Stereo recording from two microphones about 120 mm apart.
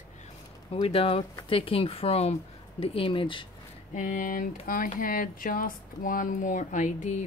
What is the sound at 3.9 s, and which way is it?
Speech, 90° left.